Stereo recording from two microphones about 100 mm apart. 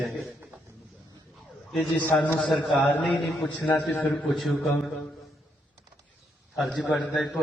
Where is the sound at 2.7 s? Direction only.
5° left (ahead or behind).